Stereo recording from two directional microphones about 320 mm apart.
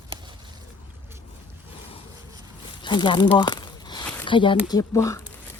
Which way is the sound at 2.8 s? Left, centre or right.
Centre.